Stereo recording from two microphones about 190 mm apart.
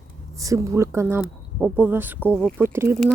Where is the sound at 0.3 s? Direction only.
15° right (ahead or behind).